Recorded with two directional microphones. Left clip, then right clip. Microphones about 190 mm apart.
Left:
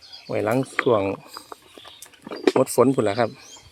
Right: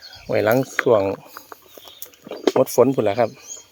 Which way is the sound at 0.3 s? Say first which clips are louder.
Right 5 dB; 25° right (ahead or behind).